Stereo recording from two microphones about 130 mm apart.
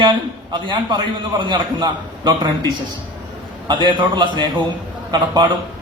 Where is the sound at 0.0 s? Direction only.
35° right (ahead or behind).